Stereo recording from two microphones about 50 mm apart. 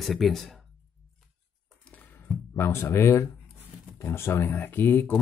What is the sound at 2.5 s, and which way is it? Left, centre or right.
Speech, left.